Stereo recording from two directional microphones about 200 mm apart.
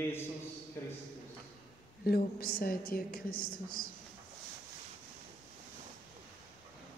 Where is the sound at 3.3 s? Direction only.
90° left.